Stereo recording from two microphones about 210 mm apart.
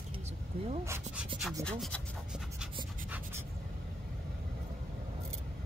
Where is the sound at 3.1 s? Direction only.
10° right (ahead or behind).